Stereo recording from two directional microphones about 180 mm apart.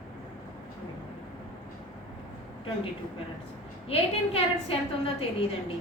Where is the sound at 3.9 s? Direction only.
30° left (ahead or behind).